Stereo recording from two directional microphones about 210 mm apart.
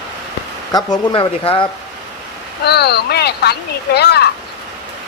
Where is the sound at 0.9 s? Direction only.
25° left (ahead or behind).